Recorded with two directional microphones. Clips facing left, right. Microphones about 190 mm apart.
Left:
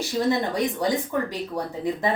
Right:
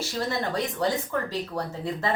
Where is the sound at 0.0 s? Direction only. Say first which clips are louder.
Left 5 dB; 15° left (ahead or behind).